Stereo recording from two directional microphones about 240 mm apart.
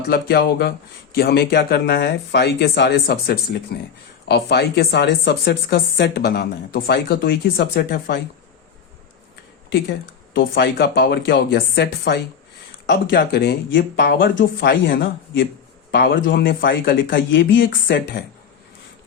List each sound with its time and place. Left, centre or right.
0.1 s speech: left
10.3 s speech: left